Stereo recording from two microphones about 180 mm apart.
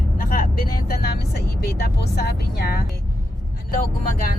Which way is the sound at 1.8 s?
60° left (ahead or behind).